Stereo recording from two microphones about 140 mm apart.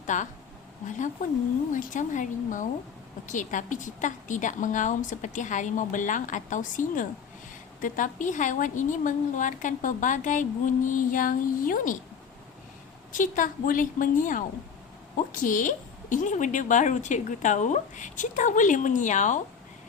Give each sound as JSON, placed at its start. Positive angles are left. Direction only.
{"t": 0.1, "sound": "a woman's voice", "side_deg": 60}
{"t": 13.1, "sound": "a woman's voice", "side_deg": 70}